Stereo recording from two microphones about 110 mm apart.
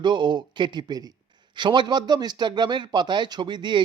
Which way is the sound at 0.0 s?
45° right (ahead or behind).